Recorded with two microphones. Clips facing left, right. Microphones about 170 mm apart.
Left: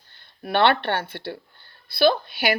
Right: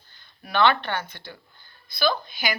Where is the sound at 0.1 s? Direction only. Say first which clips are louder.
Left 5 dB; 60° left (ahead or behind).